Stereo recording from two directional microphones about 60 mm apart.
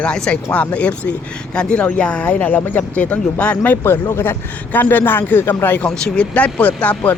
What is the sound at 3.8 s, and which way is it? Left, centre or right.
A man's voice, left.